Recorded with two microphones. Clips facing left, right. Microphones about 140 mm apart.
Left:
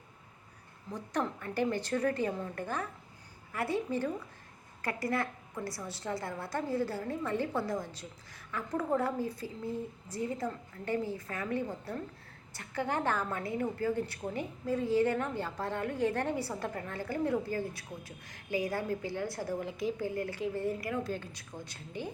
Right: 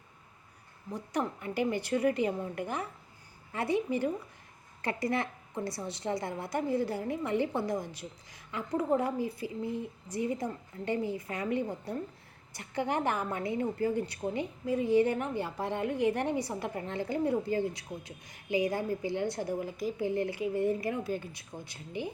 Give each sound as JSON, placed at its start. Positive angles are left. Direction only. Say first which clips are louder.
{"t": 0.9, "sound": "a woman's voice", "louder": "right 1 dB", "side_deg": -10}
{"t": 19.5, "sound": "a woman's voice", "louder": "right 1 dB", "side_deg": 0}
{"t": 20.0, "sound": "a woman's voice", "louder": "right 4 dB", "side_deg": -20}
{"t": 21.0, "sound": "a woman's voice", "louder": "right 2 dB", "side_deg": -10}